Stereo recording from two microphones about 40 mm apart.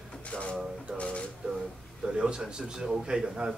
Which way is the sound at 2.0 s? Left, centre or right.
Right.